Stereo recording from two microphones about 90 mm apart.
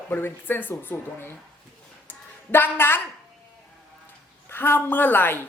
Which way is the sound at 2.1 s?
25° left (ahead or behind).